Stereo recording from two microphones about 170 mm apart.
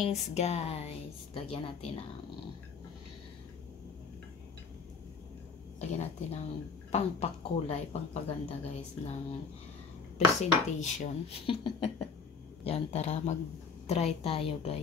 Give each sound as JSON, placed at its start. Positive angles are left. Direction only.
{"t": 0.0, "sound": "speech", "side_deg": 40}
{"t": 5.8, "sound": "speech", "side_deg": 40}
{"t": 10.1, "sound": "speech", "side_deg": 40}